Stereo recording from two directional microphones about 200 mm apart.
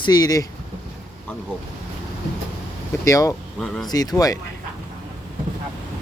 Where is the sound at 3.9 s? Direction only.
20° left (ahead or behind).